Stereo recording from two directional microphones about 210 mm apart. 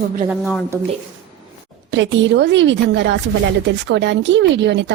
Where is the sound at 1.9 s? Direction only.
55° right (ahead or behind).